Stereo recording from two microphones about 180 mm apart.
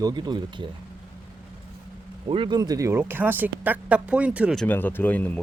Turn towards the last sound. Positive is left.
turn(degrees=10)  # may be behind; listen again after turning